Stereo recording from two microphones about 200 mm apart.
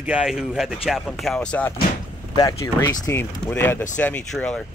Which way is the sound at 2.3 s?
15° left (ahead or behind).